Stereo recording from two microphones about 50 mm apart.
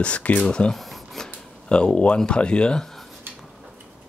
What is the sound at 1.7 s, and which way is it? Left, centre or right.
Speech, left.